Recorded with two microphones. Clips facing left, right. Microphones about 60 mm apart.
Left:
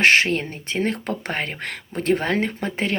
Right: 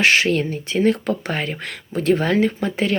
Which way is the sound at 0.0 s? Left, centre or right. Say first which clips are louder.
Even; left.